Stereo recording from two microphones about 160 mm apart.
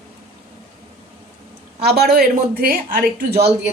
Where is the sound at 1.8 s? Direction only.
80° right.